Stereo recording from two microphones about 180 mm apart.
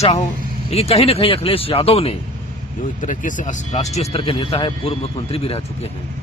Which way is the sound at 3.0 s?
45° left (ahead or behind).